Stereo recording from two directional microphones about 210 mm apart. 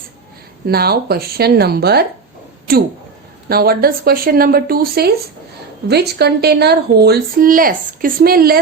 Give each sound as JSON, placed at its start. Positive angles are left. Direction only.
{"t": 0.7, "sound": "speech", "side_deg": -45}